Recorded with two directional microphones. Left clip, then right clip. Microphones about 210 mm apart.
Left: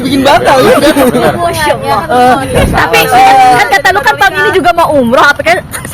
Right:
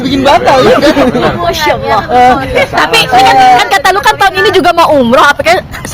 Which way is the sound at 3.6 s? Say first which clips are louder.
Even; 20° right (ahead or behind).